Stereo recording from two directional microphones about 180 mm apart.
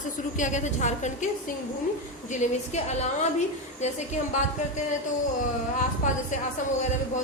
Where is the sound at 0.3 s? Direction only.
45° left (ahead or behind).